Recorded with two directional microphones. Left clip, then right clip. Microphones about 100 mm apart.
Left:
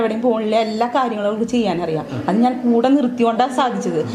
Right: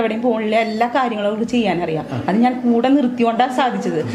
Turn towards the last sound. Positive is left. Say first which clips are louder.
# even
turn(degrees=-10)  # may be behind; listen again after turning